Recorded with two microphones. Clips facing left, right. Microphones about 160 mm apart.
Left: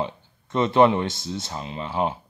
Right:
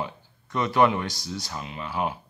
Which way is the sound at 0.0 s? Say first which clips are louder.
Left 4 dB; 25° left (ahead or behind).